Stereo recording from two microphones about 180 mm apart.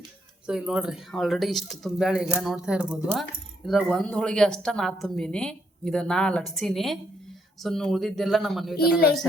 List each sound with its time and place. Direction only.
0.4 s speech: 5° right (ahead or behind)
8.7 s speech: 60° left (ahead or behind)